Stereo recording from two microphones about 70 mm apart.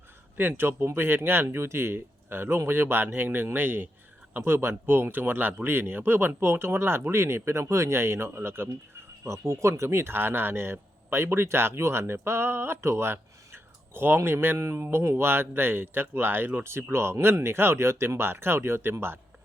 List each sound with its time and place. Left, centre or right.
0.3 s speech: right
14.2 s speech: right